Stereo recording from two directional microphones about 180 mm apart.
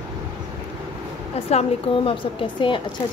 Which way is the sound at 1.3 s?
35° left (ahead or behind).